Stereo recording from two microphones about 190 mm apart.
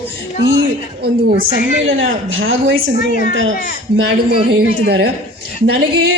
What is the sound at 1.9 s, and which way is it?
Speech, 90° right.